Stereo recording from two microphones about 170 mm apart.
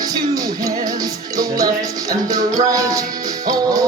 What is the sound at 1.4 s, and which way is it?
Music, 20° right (ahead or behind).